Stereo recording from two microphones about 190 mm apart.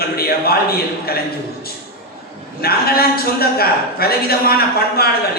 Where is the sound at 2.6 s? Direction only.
55° left (ahead or behind).